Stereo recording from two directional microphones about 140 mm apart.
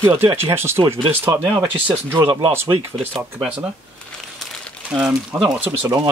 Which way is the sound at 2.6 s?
40° right (ahead or behind).